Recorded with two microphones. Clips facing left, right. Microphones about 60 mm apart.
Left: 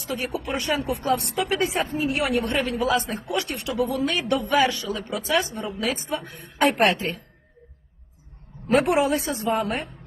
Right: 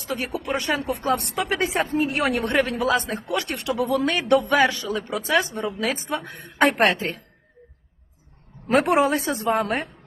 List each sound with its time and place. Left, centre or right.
0.0 s a woman's voice: right
3.5 s a woman's voice: right
6.1 s a woman's voice: right
6.7 s speech: right
8.7 s a woman's voice: right